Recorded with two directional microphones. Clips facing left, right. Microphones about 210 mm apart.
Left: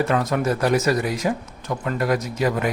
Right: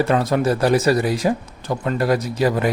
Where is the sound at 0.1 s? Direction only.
30° right (ahead or behind).